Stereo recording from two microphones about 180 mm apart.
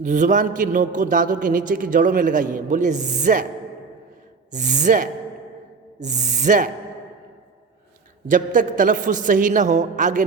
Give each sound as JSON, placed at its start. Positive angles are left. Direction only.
{"t": 0.0, "sound": "a man's voice", "side_deg": -45}
{"t": 4.5, "sound": "a man's voice", "side_deg": -45}
{"t": 8.3, "sound": "a man's voice", "side_deg": -45}